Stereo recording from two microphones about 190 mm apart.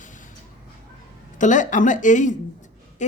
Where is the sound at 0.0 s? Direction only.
40° left (ahead or behind).